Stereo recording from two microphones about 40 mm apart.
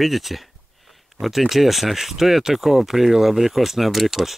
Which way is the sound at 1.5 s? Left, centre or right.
Centre.